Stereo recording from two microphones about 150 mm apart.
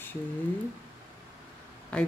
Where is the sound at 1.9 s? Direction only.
5° left (ahead or behind).